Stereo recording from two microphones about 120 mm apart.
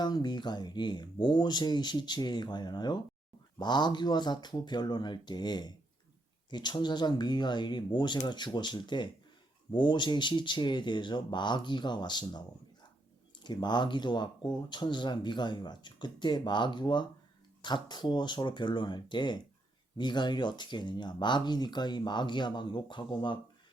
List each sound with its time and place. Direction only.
0.0 s speech: 35° left (ahead or behind)
13.4 s speech: 40° left (ahead or behind)